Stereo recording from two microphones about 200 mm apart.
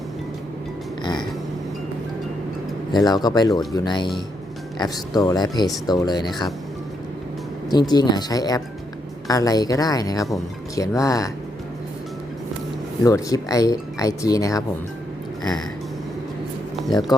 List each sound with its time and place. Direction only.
1.0 s a sound: 20° left (ahead or behind)
2.9 s speech: 20° left (ahead or behind)
7.7 s speech: 20° left (ahead or behind)
13.0 s speech: 15° left (ahead or behind)
17.1 s speech: 20° left (ahead or behind)